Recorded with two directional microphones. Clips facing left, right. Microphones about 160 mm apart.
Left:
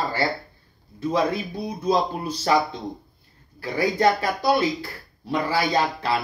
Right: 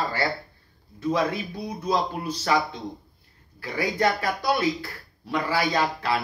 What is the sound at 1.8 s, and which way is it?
Speech, 30° left (ahead or behind).